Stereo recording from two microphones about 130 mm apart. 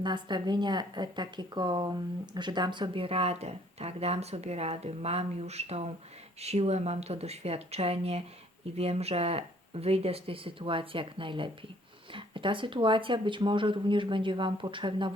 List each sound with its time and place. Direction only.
0.0 s a woman's voice: 35° right (ahead or behind)